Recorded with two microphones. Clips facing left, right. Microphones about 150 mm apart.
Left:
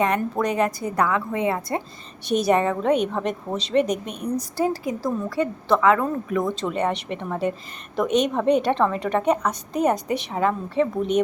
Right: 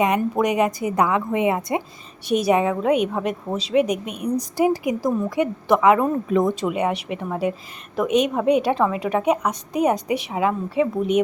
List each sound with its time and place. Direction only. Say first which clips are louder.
0.0 s a woman's voice: right 3 dB; 15° right (ahead or behind)